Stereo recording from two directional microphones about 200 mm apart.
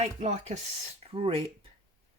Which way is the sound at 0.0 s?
35° right (ahead or behind).